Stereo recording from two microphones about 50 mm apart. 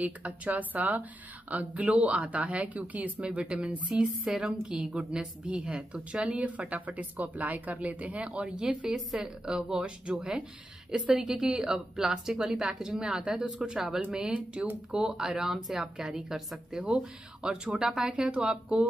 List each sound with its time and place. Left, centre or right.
0.0 s a woman's voice: right; by 18.9 s centre